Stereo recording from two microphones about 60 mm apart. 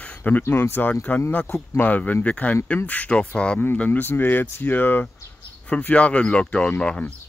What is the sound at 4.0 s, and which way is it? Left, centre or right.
Speech, left.